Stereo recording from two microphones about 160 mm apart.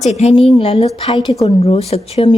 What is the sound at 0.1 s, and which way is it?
Speech, 40° left (ahead or behind).